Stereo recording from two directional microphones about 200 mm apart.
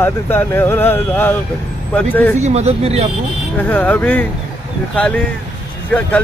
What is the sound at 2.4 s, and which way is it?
Speech, 30° right (ahead or behind).